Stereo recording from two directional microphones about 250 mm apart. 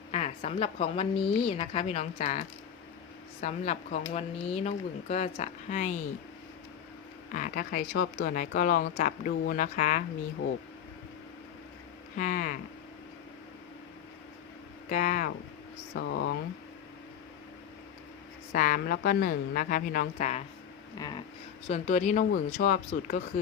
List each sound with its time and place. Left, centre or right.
0.1 s speech: left
7.3 s a woman's voice: left
12.1 s a woman's voice: left
14.8 s speech: left
16.0 s speech: left
18.5 s a woman's voice: left
21.7 s a woman's voice: left